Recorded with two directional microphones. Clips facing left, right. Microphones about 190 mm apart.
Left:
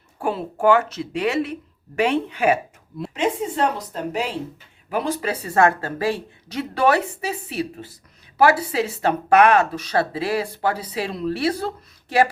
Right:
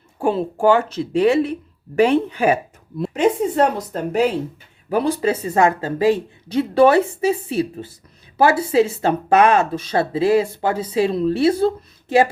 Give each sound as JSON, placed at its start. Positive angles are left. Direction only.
{"t": 0.2, "sound": "speech", "side_deg": -25}
{"t": 3.0, "sound": "a woman's voice", "side_deg": -50}
{"t": 4.9, "sound": "speech", "side_deg": -35}